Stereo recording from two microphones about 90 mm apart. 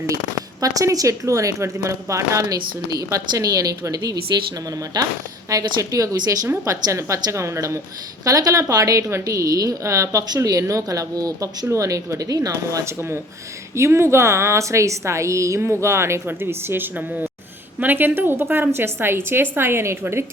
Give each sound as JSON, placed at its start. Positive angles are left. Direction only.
{"t": 0.6, "sound": "a woman's voice", "side_deg": -40}
{"t": 5.5, "sound": "a woman's voice", "side_deg": -40}